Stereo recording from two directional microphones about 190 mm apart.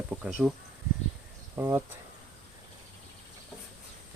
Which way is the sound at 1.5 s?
10° right (ahead or behind).